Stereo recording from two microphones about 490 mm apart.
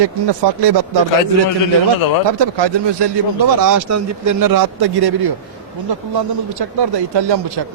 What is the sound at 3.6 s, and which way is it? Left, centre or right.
Speech, right.